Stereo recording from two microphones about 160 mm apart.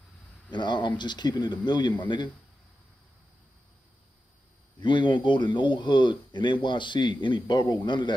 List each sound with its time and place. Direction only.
0.5 s speech: 30° left (ahead or behind)
4.7 s speech: 30° left (ahead or behind)